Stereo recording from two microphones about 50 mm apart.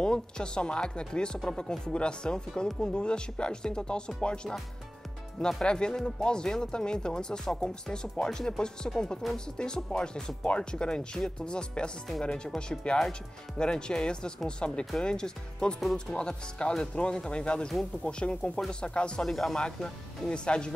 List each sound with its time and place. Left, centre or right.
0.0 s speech: centre
5.6 s speech: centre
15.8 s speech: centre
16.2 s speech: centre
19.2 s speech: centre
19.6 s speech: centre